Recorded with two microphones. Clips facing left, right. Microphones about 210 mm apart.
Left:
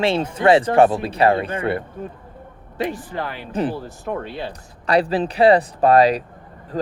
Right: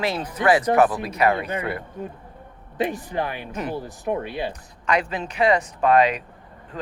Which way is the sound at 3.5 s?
30° left (ahead or behind).